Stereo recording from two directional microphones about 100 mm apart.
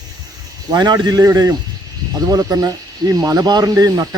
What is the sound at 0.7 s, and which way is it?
Speech, 40° right (ahead or behind).